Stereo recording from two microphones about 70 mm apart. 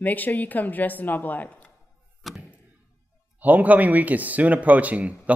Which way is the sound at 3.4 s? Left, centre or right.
Right.